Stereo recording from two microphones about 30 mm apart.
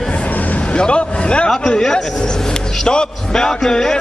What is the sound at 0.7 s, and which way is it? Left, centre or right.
Speech, left.